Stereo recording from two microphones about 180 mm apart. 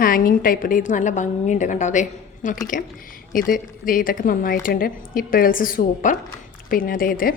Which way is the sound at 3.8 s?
50° left (ahead or behind).